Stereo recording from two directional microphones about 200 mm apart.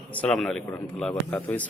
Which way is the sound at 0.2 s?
5° left (ahead or behind).